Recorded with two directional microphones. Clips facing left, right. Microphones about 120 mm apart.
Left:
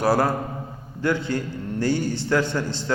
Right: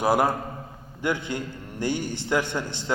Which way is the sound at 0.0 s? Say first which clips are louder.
Left 1 dB; 15° right (ahead or behind).